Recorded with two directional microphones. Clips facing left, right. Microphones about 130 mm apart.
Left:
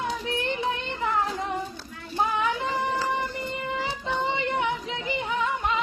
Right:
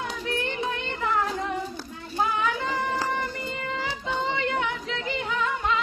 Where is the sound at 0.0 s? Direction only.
20° left (ahead or behind).